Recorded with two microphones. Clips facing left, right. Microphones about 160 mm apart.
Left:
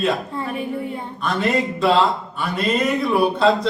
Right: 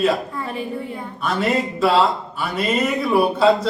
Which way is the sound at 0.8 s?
30° left (ahead or behind).